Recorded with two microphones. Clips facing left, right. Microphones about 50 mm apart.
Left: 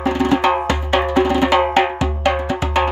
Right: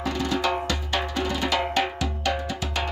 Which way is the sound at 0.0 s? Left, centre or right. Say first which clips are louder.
Left 9 dB; left.